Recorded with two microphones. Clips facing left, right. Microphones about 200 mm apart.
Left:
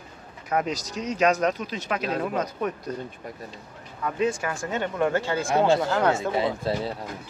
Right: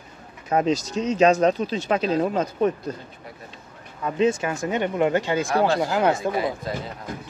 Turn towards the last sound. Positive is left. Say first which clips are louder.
# left 2 dB
turn(degrees=30)  # may be behind; listen again after turning